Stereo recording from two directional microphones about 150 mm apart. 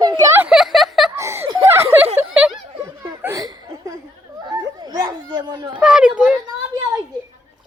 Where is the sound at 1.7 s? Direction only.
15° right (ahead or behind).